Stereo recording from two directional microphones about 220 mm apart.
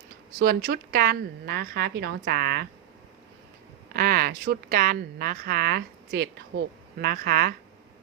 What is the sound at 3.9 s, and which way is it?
Speech, 40° right (ahead or behind).